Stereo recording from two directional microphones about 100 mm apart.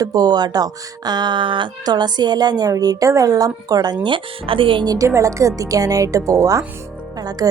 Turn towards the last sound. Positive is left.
turn(degrees=-40)  # may be behind; listen again after turning